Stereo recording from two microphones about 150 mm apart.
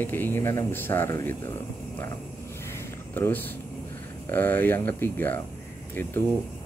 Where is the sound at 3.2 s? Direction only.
15° left (ahead or behind).